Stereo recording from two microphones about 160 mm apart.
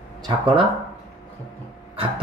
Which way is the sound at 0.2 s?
35° right (ahead or behind).